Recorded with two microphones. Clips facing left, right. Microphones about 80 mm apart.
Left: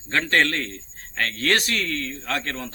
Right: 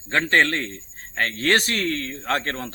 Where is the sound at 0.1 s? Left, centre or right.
Right.